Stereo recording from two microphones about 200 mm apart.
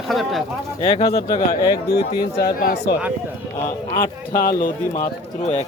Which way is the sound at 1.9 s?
50° left (ahead or behind).